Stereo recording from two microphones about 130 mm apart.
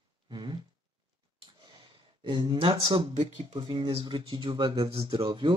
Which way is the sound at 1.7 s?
40° right (ahead or behind).